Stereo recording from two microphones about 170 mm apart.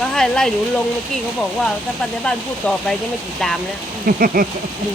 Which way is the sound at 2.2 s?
5° left (ahead or behind).